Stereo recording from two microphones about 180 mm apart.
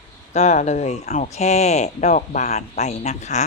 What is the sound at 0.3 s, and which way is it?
Speech, 40° left (ahead or behind).